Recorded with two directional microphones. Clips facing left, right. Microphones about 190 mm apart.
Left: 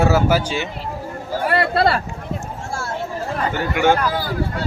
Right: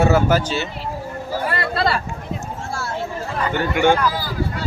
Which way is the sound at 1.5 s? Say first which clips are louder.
Left 6 dB; 55° left (ahead or behind).